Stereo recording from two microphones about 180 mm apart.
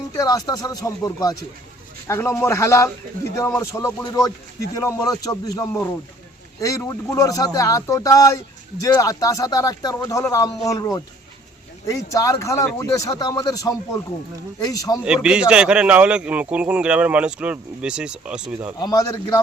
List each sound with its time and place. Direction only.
0.2 s speech: 20° left (ahead or behind)
15.0 s speech: 5° right (ahead or behind)
18.8 s speech: 20° left (ahead or behind)